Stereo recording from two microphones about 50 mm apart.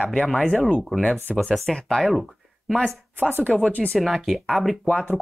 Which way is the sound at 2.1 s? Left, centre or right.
Centre.